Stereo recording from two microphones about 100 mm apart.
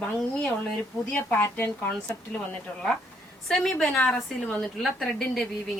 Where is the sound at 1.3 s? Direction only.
20° left (ahead or behind).